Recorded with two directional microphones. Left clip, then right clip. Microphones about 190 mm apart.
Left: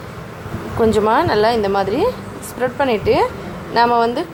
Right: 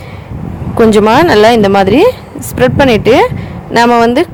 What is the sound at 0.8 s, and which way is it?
Speech, 40° right (ahead or behind).